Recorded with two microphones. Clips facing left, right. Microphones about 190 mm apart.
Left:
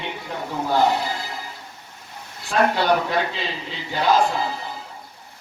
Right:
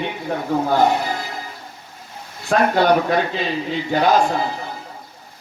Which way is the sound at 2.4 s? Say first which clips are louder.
Right 4 dB; 50° right (ahead or behind).